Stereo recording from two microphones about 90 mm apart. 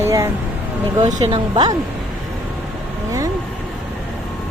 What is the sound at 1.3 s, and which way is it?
Speech, 55° right (ahead or behind).